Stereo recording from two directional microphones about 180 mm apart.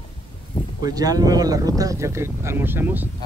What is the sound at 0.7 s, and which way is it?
Speech, 20° right (ahead or behind).